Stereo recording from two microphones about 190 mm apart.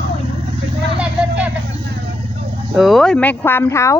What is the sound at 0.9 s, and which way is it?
Vehicle, 5° right (ahead or behind).